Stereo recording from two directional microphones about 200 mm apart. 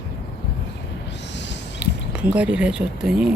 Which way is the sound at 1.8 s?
5° right (ahead or behind).